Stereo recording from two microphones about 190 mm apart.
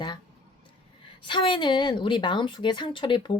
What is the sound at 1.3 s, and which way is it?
Speech, 25° left (ahead or behind).